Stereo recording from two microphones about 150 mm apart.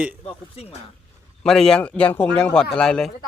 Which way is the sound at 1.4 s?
5° left (ahead or behind).